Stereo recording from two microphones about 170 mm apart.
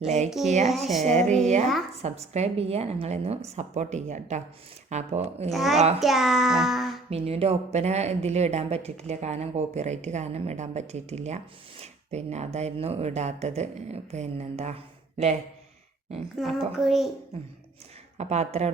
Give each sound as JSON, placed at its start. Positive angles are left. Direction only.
{"t": 0.3, "sound": "a child's voice", "side_deg": 0}
{"t": 1.0, "sound": "speech", "side_deg": -40}
{"t": 5.5, "sound": "a child's voice", "side_deg": 0}
{"t": 7.1, "sound": "speech", "side_deg": -35}
{"t": 11.8, "sound": "a sound", "side_deg": -40}
{"t": 12.5, "sound": "speech", "side_deg": -40}
{"t": 16.4, "sound": "a child's voice", "side_deg": 0}
{"t": 18.2, "sound": "speech", "side_deg": -40}